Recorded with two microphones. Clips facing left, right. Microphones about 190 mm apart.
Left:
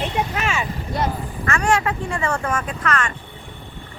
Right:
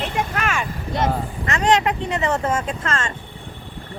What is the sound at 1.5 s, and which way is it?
Speech, 20° right (ahead or behind).